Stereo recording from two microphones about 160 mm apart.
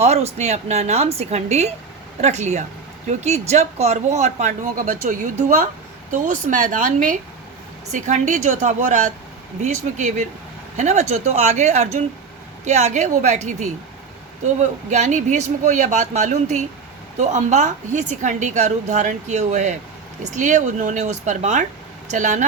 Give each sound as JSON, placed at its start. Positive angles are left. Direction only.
{"t": 0.0, "sound": "a woman's voice", "side_deg": -40}